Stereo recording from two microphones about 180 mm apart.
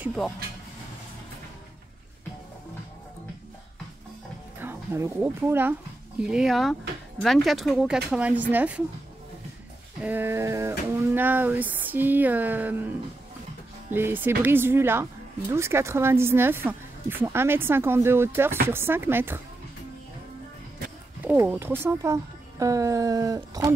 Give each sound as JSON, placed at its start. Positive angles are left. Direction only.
{"t": 4.6, "sound": "speech", "side_deg": -15}
{"t": 10.0, "sound": "speech", "side_deg": -10}
{"t": 13.9, "sound": "speech", "side_deg": -10}
{"t": 21.2, "sound": "speech", "side_deg": -10}